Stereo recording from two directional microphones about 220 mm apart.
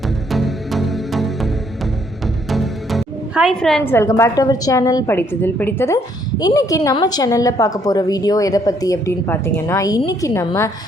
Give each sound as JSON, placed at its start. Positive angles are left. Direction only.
{"t": 0.3, "sound": "music", "side_deg": 0}
{"t": 6.4, "sound": "a woman's voice", "side_deg": 15}